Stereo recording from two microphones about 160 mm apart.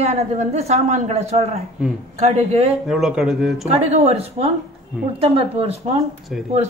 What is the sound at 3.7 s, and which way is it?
A woman's voice, 40° right (ahead or behind).